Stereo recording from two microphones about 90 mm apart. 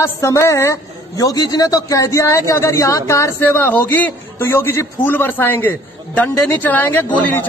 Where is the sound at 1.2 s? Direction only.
45° left (ahead or behind).